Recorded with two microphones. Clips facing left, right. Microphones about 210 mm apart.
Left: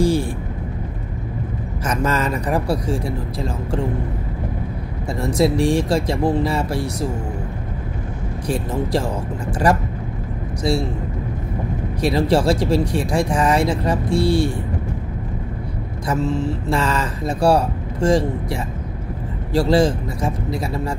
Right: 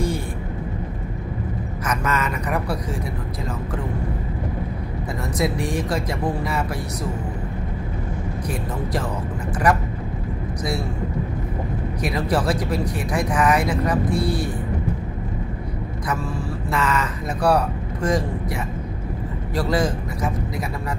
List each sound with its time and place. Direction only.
1.9 s speech: 30° left (ahead or behind)
5.2 s speech: 30° left (ahead or behind)
9.6 s speech: 30° left (ahead or behind)
12.0 s speech: 30° left (ahead or behind)
16.1 s a man's voice: 25° left (ahead or behind)